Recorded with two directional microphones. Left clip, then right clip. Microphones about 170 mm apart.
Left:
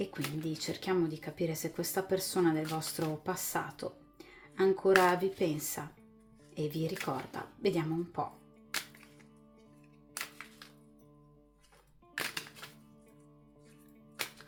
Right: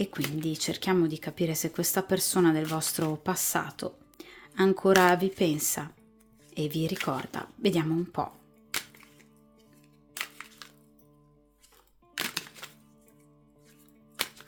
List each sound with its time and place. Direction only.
0.0 s speech: 45° right (ahead or behind)
12.1 s typewriter: 35° right (ahead or behind)